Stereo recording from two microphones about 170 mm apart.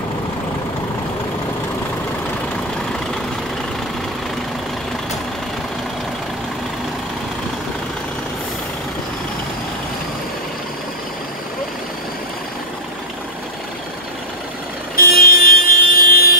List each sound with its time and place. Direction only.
15.0 s vehicle: 60° left (ahead or behind)